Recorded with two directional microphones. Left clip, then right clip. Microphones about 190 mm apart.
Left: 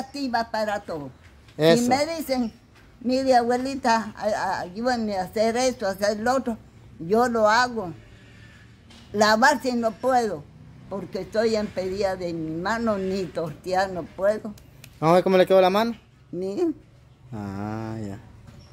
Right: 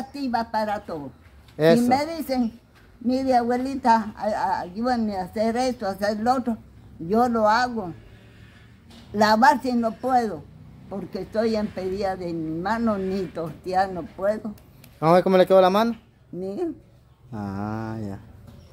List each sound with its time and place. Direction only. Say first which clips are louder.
0.1 s a woman's voice: right 1 dB; 15° left (ahead or behind)
9.1 s a woman's voice: right 1 dB; 25° left (ahead or behind)
15.0 s speech: right 1 dB; centre (ahead or behind)
16.3 s speech: left 3 dB; 35° left (ahead or behind)
17.3 s speech: right 2 dB; 5° left (ahead or behind)